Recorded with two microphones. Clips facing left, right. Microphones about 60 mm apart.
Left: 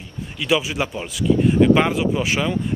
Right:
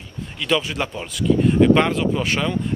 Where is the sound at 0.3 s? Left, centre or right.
Centre.